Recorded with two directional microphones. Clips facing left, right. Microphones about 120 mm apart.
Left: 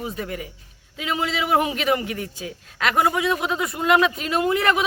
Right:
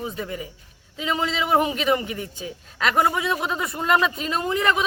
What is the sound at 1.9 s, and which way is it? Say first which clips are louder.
Speech: even; 5° left (ahead or behind).